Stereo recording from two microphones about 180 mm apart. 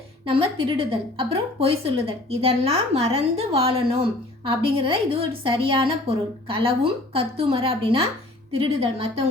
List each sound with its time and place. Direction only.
0.3 s a woman's voice: 30° right (ahead or behind)